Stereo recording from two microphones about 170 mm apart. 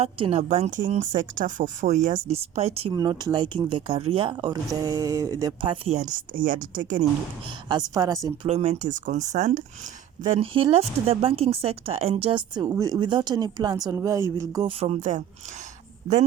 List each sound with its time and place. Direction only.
0.0 s a woman's voice: 35° right (ahead or behind)
2.9 s speech: 25° right (ahead or behind)
6.1 s a woman's voice: 55° right (ahead or behind)
7.7 s speech: 25° right (ahead or behind)
8.4 s a woman's voice: 40° right (ahead or behind); by 14.7 s 20° right (ahead or behind)
14.7 s speech: 40° right (ahead or behind)